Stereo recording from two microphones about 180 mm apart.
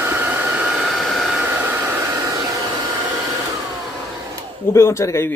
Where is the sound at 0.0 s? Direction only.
10° right (ahead or behind).